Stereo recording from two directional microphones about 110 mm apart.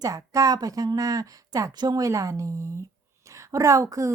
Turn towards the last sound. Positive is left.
turn(degrees=-30)  # may be behind; listen again after turning